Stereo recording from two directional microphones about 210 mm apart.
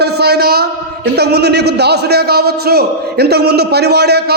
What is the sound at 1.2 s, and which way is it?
A man's voice, 50° right (ahead or behind).